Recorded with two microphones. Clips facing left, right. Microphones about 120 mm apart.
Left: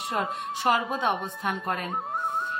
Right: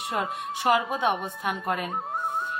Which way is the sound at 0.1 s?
10° right (ahead or behind).